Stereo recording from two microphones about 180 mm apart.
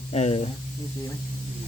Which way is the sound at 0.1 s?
35° left (ahead or behind).